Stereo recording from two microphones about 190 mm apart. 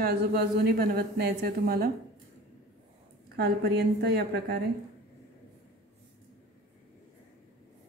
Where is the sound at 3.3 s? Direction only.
55° right (ahead or behind).